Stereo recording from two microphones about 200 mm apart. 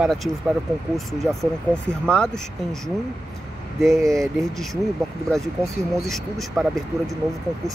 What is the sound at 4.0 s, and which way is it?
Speech, 15° right (ahead or behind).